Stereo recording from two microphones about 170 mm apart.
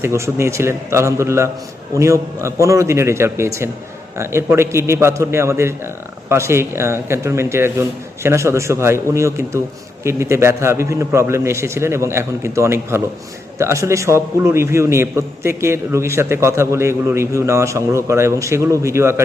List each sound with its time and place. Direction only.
0.0 s a man's voice: 15° right (ahead or behind)